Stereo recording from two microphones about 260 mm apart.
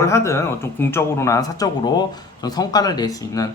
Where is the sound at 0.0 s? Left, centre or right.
Centre.